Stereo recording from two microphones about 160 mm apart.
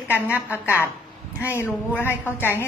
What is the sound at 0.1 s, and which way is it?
Speech, 15° left (ahead or behind).